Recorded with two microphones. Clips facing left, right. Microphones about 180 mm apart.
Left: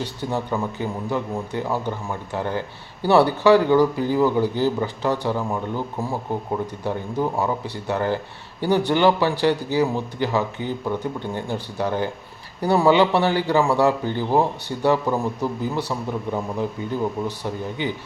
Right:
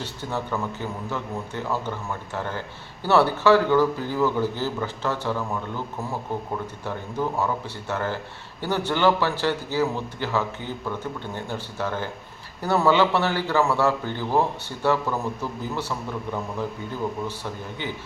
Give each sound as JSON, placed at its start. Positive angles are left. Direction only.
{"t": 0.0, "sound": "a man's voice", "side_deg": 15}
{"t": 17.8, "sound": "a man's voice", "side_deg": 15}